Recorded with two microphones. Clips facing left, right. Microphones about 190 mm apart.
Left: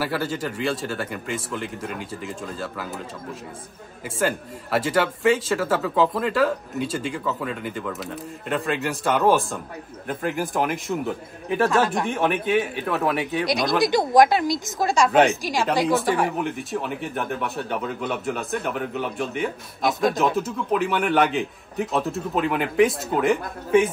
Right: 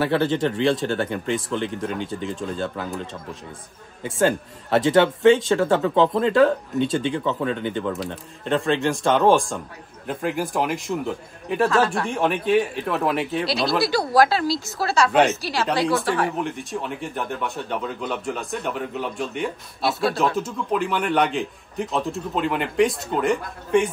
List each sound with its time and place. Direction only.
0.3 s speech: 5° left (ahead or behind)
4.0 s speech: 5° left (ahead or behind)
13.5 s speech: 15° left (ahead or behind)
19.9 s speech: 15° left (ahead or behind)
20.2 s speech: centre (ahead or behind)